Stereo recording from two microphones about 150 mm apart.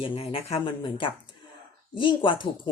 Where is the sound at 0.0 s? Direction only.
35° left (ahead or behind).